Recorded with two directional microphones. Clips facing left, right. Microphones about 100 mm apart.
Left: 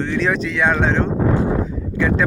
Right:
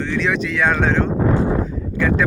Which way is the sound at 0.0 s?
35° left (ahead or behind).